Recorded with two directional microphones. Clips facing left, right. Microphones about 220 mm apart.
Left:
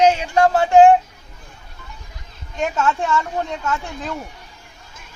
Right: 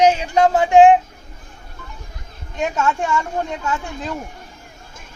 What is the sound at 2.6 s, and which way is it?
Speech, 15° right (ahead or behind).